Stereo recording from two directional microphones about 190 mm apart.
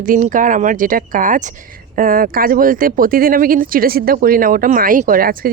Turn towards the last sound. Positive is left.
turn(degrees=-50)  # may be behind; listen again after turning